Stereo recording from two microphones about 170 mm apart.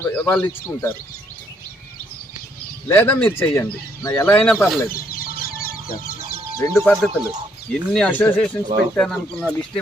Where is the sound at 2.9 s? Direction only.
10° left (ahead or behind).